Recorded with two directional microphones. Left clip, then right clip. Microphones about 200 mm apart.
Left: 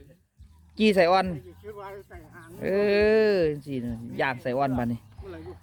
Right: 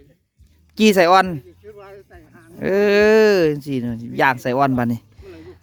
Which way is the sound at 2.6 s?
45° right (ahead or behind).